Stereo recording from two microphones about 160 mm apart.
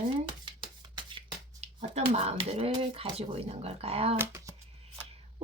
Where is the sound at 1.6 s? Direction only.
40° right (ahead or behind).